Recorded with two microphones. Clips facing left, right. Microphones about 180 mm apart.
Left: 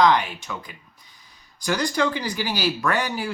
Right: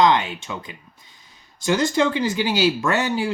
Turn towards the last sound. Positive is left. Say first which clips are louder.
# right 3 dB
turn(degrees=-25)  # may be behind; listen again after turning